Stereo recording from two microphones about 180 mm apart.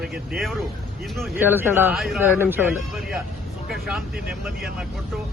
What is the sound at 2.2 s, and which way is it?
Speech, 10° right (ahead or behind).